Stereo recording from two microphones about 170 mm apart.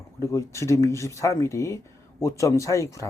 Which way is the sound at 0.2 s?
15° left (ahead or behind).